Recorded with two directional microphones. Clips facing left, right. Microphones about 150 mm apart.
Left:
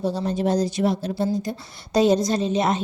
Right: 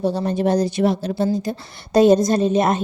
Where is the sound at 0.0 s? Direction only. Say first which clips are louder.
Right 3 dB; 60° right (ahead or behind); by 1.5 s 80° right.